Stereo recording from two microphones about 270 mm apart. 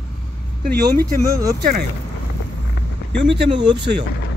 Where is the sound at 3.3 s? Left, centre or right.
Right.